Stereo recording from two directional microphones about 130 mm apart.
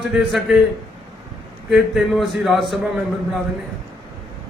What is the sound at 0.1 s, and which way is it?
Speech, 5° right (ahead or behind).